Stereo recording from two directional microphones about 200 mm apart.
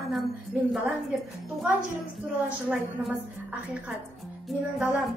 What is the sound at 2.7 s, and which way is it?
A woman's voice, 5° right (ahead or behind).